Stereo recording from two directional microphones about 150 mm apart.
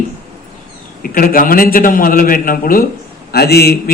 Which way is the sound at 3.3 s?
90° left.